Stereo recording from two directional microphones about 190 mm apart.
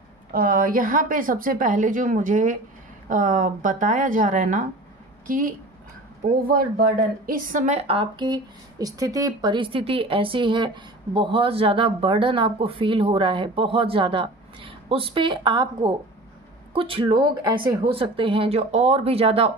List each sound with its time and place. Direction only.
0.3 s a woman's voice: 50° right (ahead or behind); by 19.5 s 30° right (ahead or behind)